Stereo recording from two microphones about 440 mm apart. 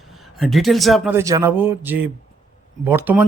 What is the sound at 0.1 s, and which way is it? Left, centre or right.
A man's voice, centre.